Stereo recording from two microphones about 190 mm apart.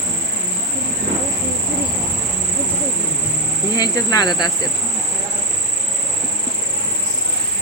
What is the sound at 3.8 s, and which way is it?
Cricket, 20° left (ahead or behind).